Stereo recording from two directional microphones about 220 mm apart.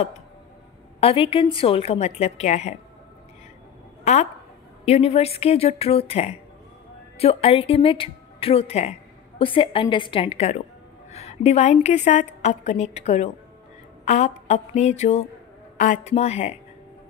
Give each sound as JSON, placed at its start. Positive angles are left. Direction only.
{"t": 1.0, "sound": "speech", "side_deg": 25}
{"t": 4.0, "sound": "a woman's voice", "side_deg": 30}